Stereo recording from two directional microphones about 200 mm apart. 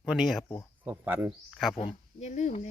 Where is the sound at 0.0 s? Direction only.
Centre (ahead or behind).